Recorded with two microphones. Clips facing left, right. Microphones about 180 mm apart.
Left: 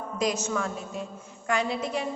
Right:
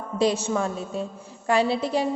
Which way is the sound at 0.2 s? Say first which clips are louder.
Right 5 dB; 30° right (ahead or behind).